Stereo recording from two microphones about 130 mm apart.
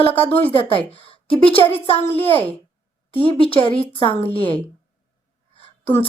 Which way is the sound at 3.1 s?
45° left (ahead or behind).